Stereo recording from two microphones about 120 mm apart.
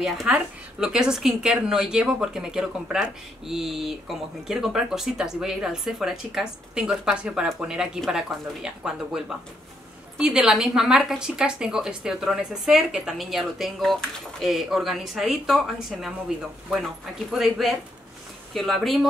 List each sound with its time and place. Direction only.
0.0 s a woman's voice: 5° right (ahead or behind)